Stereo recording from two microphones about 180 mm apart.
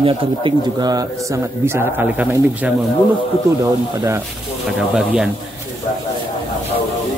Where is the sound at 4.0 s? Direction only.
15° right (ahead or behind).